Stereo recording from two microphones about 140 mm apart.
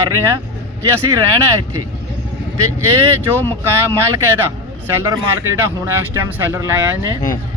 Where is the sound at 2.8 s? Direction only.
20° right (ahead or behind).